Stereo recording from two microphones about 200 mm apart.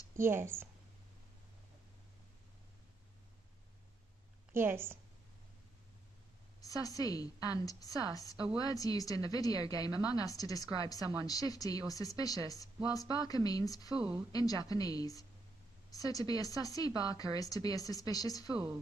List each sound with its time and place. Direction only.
0.2 s speech: 10° right (ahead or behind)
4.5 s a woman's voice: 10° right (ahead or behind)
6.6 s a woman's voice: 15° left (ahead or behind)